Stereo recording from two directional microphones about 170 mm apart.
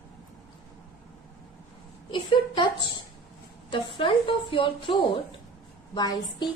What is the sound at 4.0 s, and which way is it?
A woman's voice, 30° left (ahead or behind).